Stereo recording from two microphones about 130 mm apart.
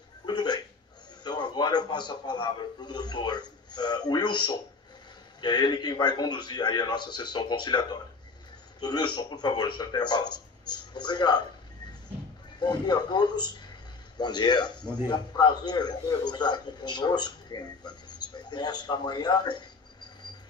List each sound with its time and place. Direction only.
0.3 s a sound: 35° left (ahead or behind)
1.2 s a man's voice: 35° left (ahead or behind)
12.5 s a man's voice: 35° left (ahead or behind)